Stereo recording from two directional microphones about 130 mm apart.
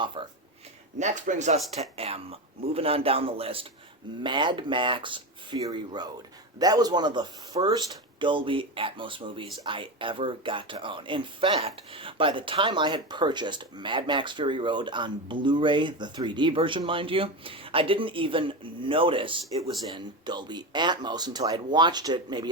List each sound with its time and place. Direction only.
0.0 s speech: 40° right (ahead or behind)
0.9 s a man's voice: 65° right (ahead or behind); by 19.7 s 45° right (ahead or behind)
19.9 s speech: 35° right (ahead or behind)